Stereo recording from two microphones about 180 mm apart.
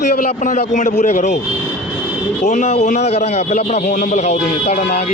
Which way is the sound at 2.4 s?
40° left (ahead or behind).